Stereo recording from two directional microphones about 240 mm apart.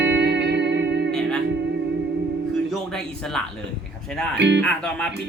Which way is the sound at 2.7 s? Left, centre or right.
Centre.